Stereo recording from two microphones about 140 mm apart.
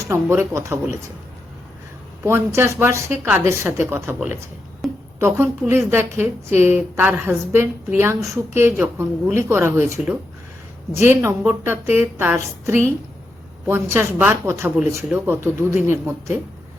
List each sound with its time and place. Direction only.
0.0 s a man's voice: 20° right (ahead or behind)
2.2 s a woman's voice: 20° right (ahead or behind)
4.8 s a sound: centre (ahead or behind)
5.2 s a woman's voice: 15° right (ahead or behind)